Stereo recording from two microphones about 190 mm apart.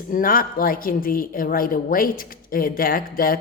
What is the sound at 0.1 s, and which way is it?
A woman's voice, 50° left (ahead or behind).